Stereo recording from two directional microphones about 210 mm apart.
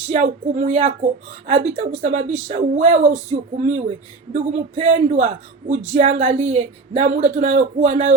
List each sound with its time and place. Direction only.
0.1 s a man's voice: 35° right (ahead or behind)